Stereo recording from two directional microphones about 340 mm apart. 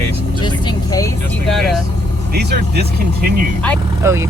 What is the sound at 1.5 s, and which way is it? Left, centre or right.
Speech, centre.